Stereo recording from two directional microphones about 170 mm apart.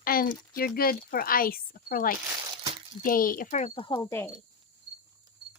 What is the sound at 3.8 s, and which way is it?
Speech, 25° left (ahead or behind).